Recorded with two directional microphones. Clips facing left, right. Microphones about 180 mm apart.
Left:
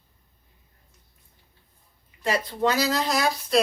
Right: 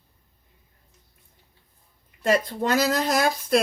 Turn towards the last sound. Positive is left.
turn(degrees=-50)  # may be behind; listen again after turning